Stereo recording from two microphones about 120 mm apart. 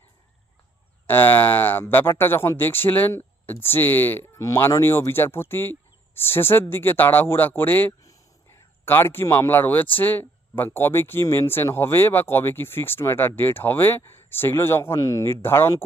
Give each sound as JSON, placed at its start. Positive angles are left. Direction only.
{"t": 1.0, "sound": "speech", "side_deg": 15}